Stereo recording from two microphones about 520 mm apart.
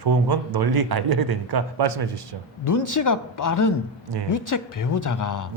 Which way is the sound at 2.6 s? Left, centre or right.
Left.